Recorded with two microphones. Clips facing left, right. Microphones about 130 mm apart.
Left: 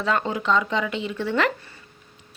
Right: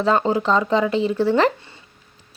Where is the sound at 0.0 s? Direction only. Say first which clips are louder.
Right 6 dB; 30° right (ahead or behind).